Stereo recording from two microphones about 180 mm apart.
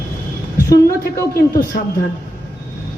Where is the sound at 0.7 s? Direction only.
55° left (ahead or behind).